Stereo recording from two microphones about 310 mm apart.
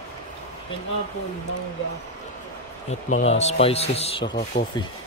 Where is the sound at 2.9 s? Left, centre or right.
Left.